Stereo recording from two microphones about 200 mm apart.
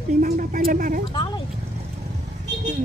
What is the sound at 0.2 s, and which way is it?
Speech, 45° right (ahead or behind).